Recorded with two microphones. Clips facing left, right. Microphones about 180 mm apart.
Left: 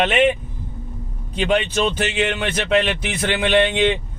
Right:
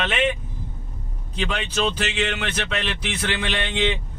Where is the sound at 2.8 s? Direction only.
55° left (ahead or behind).